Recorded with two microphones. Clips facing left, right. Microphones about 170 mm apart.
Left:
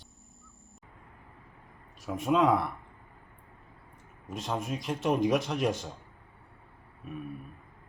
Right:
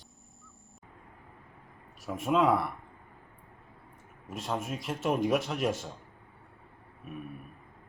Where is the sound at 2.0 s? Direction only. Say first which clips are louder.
Left 1 dB; centre (ahead or behind).